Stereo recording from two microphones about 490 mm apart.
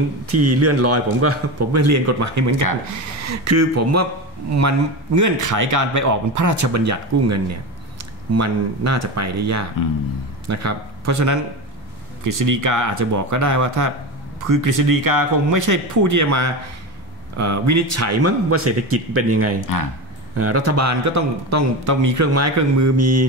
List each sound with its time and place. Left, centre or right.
0.3 s a man's voice: right
19.6 s speech: left
20.3 s speech: right